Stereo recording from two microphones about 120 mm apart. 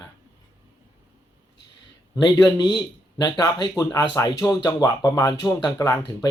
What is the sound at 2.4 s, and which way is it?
Speech, 35° left (ahead or behind).